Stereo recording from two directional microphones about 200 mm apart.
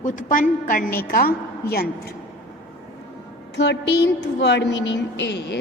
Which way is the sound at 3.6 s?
60° left (ahead or behind).